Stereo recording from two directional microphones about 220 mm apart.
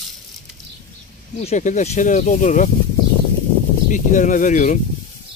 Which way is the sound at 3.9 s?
35° left (ahead or behind).